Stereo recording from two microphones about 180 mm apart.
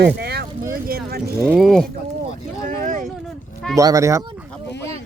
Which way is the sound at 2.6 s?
45° right (ahead or behind).